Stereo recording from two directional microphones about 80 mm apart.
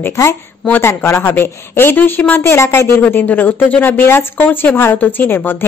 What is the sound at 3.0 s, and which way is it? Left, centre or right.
Speech, left.